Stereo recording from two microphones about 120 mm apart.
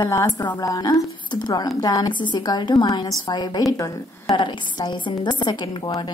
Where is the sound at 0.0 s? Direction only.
25° left (ahead or behind).